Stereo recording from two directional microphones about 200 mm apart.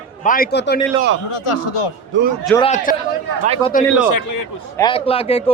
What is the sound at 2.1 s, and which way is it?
Speech, 70° right (ahead or behind).